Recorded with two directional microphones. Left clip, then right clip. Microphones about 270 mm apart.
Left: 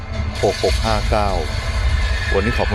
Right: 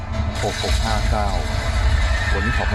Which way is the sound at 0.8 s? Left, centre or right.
Left.